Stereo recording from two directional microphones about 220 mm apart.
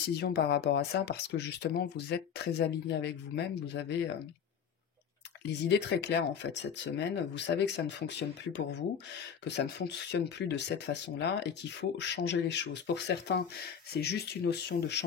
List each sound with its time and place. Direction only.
0.2 s speech: 50° left (ahead or behind)
5.7 s speech: 50° left (ahead or behind)